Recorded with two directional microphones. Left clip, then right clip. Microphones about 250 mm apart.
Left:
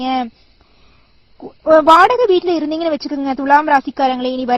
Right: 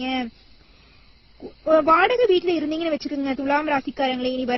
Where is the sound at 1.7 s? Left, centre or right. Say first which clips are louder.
Left 8 dB; left.